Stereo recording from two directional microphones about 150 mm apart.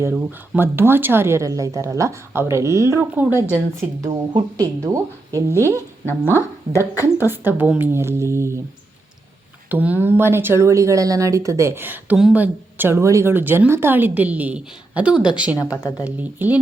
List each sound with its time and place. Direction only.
0.0 s a woman's voice: 10° right (ahead or behind)
4.1 s a woman's voice: 25° right (ahead or behind)
9.6 s a woman's voice: 10° right (ahead or behind)